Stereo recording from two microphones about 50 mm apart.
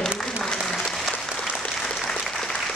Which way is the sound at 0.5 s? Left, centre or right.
Centre.